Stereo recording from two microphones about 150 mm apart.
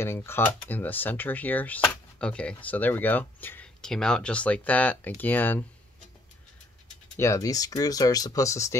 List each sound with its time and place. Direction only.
0.0 s speech: 15° left (ahead or behind)
7.2 s speech: 20° left (ahead or behind)